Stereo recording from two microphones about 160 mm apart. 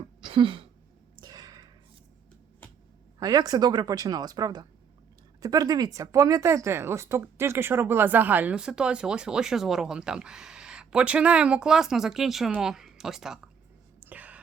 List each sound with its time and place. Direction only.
0.2 s a sound: 30° right (ahead or behind)
3.2 s speech: 25° right (ahead or behind); by 13.4 s centre (ahead or behind)
14.0 s whispering: 10° right (ahead or behind)